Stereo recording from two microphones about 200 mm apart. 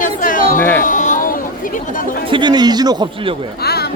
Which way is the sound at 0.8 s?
40° left (ahead or behind).